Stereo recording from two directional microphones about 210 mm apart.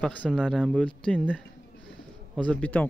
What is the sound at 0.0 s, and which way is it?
Speech, 5° left (ahead or behind).